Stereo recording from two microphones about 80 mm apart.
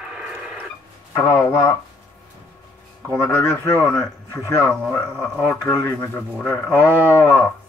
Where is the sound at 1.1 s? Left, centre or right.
Left.